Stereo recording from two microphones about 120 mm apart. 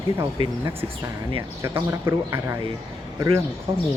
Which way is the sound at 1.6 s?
25° right (ahead or behind).